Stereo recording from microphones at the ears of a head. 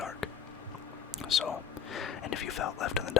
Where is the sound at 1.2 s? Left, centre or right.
Left.